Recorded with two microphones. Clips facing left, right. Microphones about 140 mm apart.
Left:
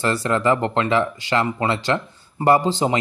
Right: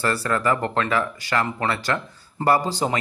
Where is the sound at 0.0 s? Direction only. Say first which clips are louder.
Left 3 dB; 20° left (ahead or behind).